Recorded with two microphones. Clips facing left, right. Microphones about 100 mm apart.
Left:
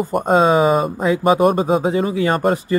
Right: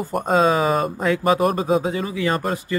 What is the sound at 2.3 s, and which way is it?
Speech, 40° left (ahead or behind).